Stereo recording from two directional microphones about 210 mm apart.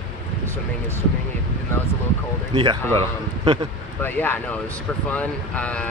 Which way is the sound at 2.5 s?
25° right (ahead or behind).